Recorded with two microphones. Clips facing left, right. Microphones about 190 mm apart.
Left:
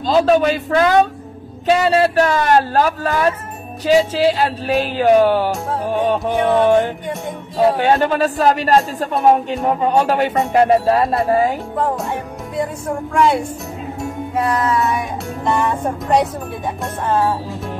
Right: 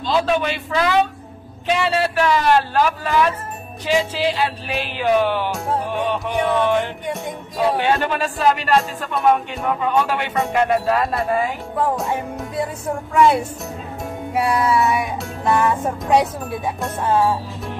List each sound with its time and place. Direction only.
0.0 s a man's voice: 40° left (ahead or behind)
5.9 s music: 40° left (ahead or behind)
6.2 s a man's voice: 40° left (ahead or behind)
11.8 s music: centre (ahead or behind)
13.1 s speech: centre (ahead or behind)
14.3 s music: 10° right (ahead or behind)